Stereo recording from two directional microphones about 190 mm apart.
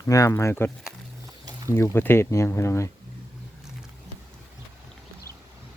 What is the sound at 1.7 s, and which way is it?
Speech, 15° left (ahead or behind).